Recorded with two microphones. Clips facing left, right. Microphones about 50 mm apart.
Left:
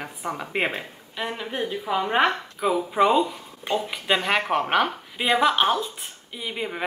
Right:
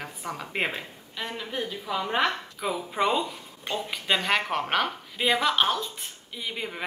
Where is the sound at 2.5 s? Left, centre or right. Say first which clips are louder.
Left 10 dB; centre.